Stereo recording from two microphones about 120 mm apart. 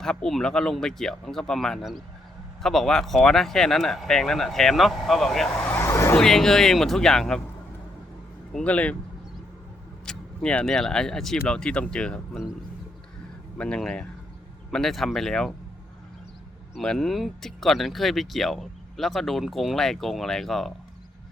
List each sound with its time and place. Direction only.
0.0 s speech: 5° left (ahead or behind)
5.7 s vehicle: 25° left (ahead or behind)
6.1 s speech: 5° left (ahead or behind)
8.5 s speech: 10° left (ahead or behind)
10.1 s speech: 10° left (ahead or behind)
13.6 s speech: 5° left (ahead or behind)
16.7 s speech: 5° left (ahead or behind)